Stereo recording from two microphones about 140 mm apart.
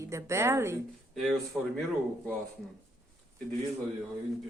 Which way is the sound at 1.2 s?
Centre (ahead or behind).